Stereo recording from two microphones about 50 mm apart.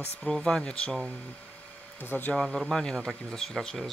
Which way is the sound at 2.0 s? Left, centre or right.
Left.